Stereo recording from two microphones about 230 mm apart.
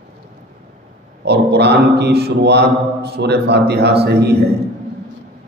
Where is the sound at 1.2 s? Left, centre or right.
Right.